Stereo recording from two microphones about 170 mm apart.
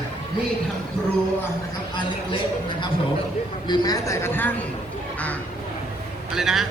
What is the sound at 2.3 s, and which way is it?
Speech, 30° left (ahead or behind).